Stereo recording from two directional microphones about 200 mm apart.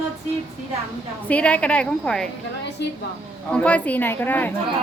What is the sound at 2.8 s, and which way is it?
Speech, 60° left (ahead or behind).